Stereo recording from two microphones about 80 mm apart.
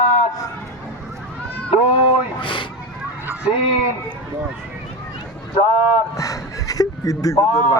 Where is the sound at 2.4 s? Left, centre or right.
Left.